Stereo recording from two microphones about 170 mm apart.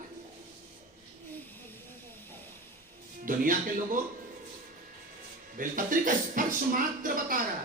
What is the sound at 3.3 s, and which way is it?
Speech, 55° right (ahead or behind).